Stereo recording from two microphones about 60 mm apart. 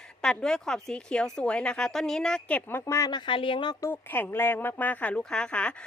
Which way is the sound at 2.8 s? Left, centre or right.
Left.